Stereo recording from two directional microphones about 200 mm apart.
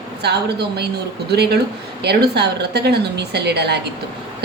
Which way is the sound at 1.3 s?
55° right (ahead or behind).